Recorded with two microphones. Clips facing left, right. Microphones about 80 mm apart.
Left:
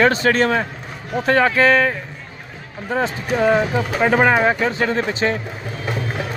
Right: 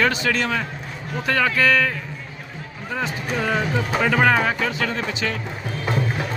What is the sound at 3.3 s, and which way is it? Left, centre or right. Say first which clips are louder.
Speech: left 7 dB; left.